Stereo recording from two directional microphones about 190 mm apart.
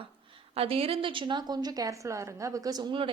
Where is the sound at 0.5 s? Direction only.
30° right (ahead or behind).